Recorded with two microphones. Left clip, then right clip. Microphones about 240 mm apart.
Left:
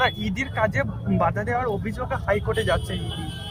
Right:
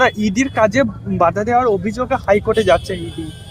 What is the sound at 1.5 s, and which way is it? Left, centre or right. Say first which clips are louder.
Speech: right 10 dB; right.